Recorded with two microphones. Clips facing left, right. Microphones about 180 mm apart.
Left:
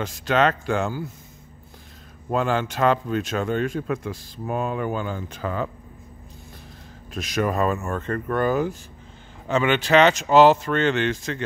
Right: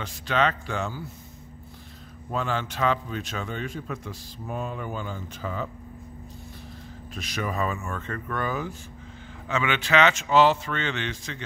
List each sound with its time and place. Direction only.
0.0 s speech: 45° left (ahead or behind)
2.3 s speech: 50° left (ahead or behind)
7.2 s speech: 45° left (ahead or behind)